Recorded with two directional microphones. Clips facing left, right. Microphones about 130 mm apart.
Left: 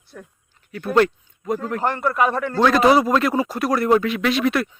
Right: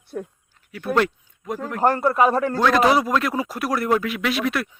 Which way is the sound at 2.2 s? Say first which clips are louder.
Right 2 dB; 35° right (ahead or behind).